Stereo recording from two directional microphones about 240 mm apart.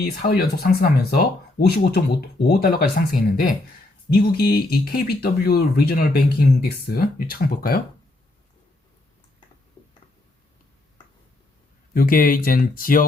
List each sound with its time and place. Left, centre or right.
0.0 s speech: left
4.2 s speech: left
11.9 s speech: left